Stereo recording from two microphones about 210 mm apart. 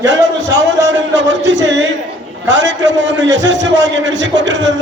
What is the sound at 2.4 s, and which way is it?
A man's voice, 60° right (ahead or behind).